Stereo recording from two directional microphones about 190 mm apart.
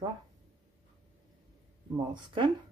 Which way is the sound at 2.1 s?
25° right (ahead or behind).